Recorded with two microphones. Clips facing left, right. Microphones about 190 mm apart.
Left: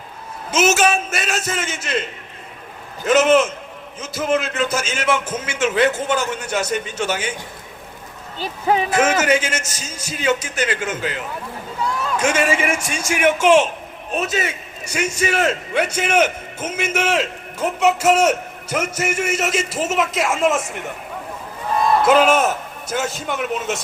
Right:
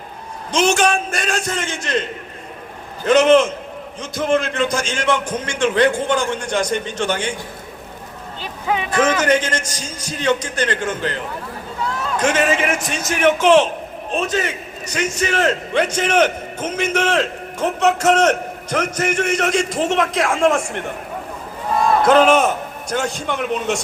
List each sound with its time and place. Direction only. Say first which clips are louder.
0.5 s a man's voice: even; 5° left (ahead or behind)
3.1 s a man's voice: right 2 dB; 5° left (ahead or behind)
8.4 s speech: left 4 dB; 40° left (ahead or behind)
8.9 s a man's voice: right 4 dB; 5° left (ahead or behind)
22.0 s a man's voice: right 3 dB; 5° left (ahead or behind)